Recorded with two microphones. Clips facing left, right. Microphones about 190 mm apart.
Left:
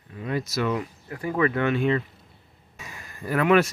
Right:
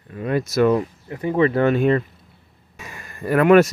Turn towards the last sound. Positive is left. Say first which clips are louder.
# right 7 dB
turn(degrees=-50)  # may be behind; listen again after turning